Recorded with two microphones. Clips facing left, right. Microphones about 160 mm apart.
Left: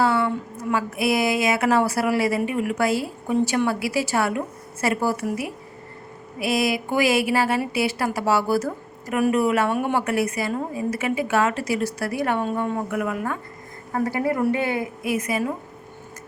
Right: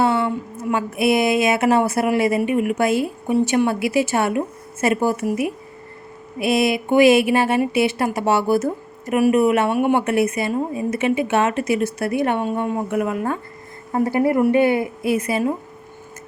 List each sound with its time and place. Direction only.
0.0 s a woman's voice: 20° right (ahead or behind)